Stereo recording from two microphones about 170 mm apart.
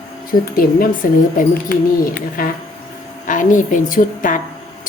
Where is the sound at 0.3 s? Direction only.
55° left (ahead or behind).